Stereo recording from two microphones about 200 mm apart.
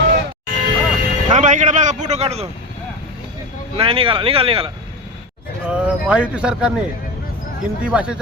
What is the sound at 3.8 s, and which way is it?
Speech, 25° right (ahead or behind).